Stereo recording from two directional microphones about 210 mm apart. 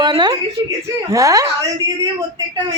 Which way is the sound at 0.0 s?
20° right (ahead or behind).